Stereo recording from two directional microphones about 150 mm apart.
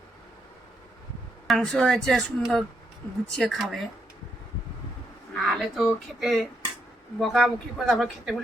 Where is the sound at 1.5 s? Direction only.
5° left (ahead or behind).